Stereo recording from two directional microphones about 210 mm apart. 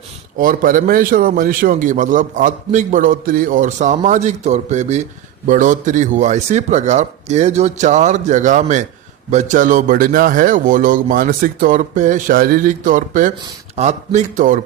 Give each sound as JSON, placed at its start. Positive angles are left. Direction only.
{"t": 0.3, "sound": "speech", "side_deg": -40}